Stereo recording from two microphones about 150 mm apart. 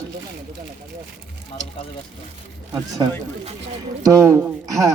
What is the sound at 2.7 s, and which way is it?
Speech, 25° right (ahead or behind).